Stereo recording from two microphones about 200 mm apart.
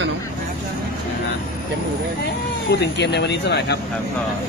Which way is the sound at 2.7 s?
55° left (ahead or behind).